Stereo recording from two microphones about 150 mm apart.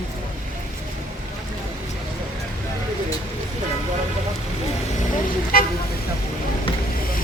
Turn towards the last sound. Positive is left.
turn(degrees=75)  # may be behind; listen again after turning